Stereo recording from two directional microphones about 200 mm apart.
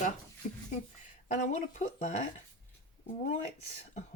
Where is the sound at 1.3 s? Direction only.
40° left (ahead or behind).